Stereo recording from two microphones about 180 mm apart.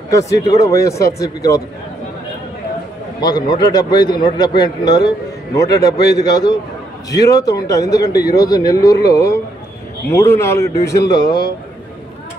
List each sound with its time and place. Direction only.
0.1 s speech: 20° left (ahead or behind)
3.2 s a man's voice: 25° left (ahead or behind)